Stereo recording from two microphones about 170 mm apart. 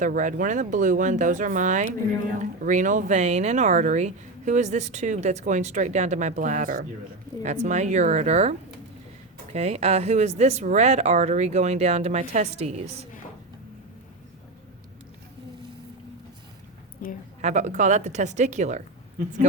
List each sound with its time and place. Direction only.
0.0 s speech: 50° right (ahead or behind)
17.0 s a woman's voice: 50° left (ahead or behind)
17.4 s speech: 45° right (ahead or behind)